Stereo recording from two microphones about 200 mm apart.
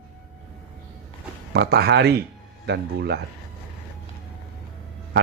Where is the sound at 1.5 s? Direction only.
55° right (ahead or behind).